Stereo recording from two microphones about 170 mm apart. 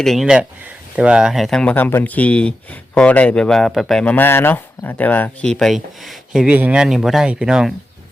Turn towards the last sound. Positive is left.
turn(degrees=-5)  # may be behind; listen again after turning